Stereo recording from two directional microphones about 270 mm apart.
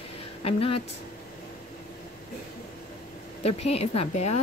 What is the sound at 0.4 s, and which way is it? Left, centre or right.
Speech, left.